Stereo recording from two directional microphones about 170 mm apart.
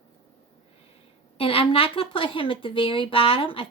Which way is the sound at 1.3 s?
35° left (ahead or behind).